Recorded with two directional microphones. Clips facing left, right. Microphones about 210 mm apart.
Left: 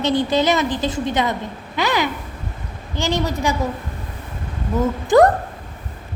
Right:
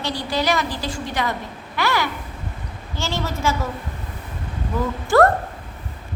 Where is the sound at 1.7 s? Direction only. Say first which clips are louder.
Left 2 dB; 20° left (ahead or behind).